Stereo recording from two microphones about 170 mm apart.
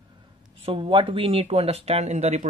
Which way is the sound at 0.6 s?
30° right (ahead or behind).